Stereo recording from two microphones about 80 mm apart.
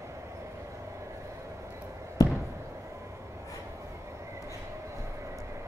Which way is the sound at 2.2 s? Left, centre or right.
Left.